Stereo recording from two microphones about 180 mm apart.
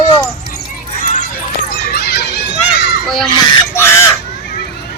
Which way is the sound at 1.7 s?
60° left (ahead or behind).